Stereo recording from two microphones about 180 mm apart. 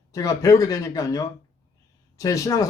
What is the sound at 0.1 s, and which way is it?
Speech, 20° left (ahead or behind).